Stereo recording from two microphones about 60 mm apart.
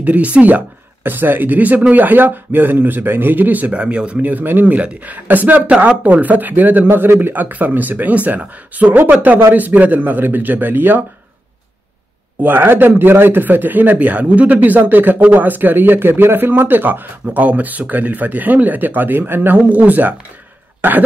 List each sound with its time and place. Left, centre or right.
0.0 s speech: right
5.7 s speech: centre
6.0 s a man's voice: right
12.4 s a man's voice: right